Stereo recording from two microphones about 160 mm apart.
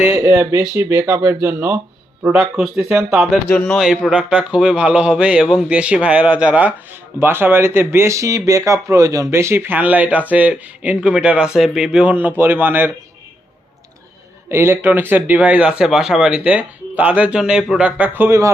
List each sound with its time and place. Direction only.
0.0 s speech: 15° right (ahead or behind)
14.5 s speech: 15° right (ahead or behind)